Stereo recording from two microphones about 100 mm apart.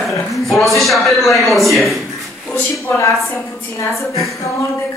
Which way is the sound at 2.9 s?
30° left (ahead or behind).